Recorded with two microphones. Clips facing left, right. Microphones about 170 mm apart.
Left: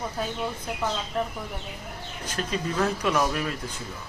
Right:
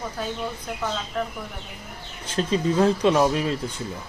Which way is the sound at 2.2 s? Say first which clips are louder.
Right 7 dB; 30° right (ahead or behind).